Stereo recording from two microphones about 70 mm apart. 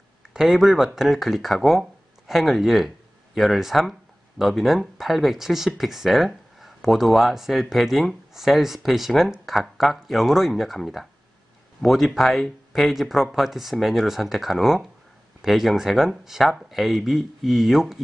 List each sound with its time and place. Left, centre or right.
0.3 s speech: centre